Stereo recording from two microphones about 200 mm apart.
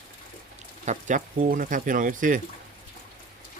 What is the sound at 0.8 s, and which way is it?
Speech, 40° right (ahead or behind).